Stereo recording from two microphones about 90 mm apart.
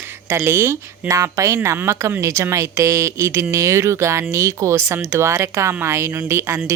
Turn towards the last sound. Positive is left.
turn(degrees=-30)  # may be behind; listen again after turning